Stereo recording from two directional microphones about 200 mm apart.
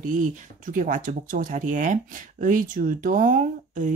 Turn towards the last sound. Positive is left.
turn(degrees=-40)  # may be behind; listen again after turning